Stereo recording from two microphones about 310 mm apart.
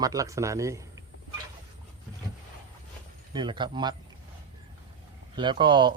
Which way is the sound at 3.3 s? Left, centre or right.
Centre.